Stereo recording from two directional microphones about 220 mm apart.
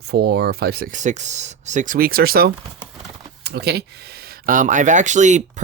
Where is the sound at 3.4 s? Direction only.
45° right (ahead or behind).